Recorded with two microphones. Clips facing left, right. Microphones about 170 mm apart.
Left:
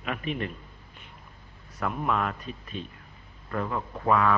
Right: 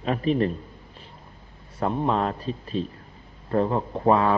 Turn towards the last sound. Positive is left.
turn(degrees=-30)  # may be behind; listen again after turning